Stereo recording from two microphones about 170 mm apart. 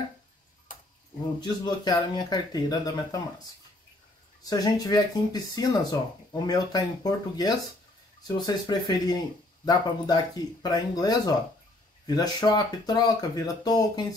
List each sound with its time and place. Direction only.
1.4 s speech: 25° left (ahead or behind)
4.5 s speech: 25° left (ahead or behind)